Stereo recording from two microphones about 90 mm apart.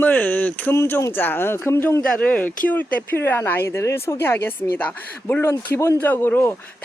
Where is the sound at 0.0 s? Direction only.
20° left (ahead or behind).